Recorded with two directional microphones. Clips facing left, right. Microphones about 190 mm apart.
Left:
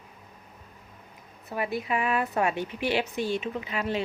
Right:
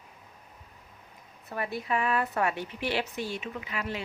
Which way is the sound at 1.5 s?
15° left (ahead or behind).